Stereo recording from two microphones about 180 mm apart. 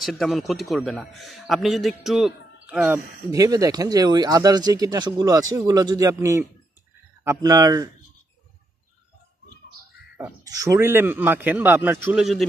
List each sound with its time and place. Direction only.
0.0 s a man's voice: centre (ahead or behind)
3.3 s speech: 20° right (ahead or behind)
10.1 s a man's voice: 15° right (ahead or behind)